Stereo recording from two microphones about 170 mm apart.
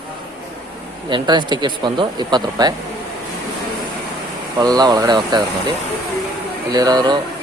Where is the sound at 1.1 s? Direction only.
25° right (ahead or behind).